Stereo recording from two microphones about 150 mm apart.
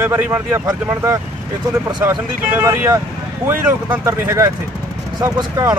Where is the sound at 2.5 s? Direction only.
15° right (ahead or behind).